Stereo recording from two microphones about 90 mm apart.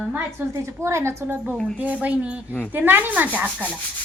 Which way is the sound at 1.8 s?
15° right (ahead or behind).